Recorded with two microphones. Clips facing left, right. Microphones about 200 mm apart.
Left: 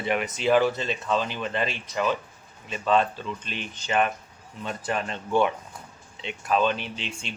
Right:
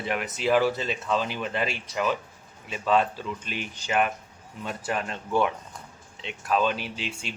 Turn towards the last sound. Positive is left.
turn(degrees=-5)  # may be behind; listen again after turning